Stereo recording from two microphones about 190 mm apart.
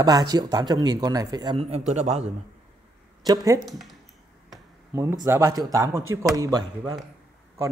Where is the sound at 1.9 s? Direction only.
35° right (ahead or behind).